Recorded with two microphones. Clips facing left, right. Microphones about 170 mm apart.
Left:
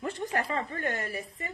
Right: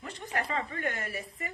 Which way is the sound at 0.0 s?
50° left (ahead or behind).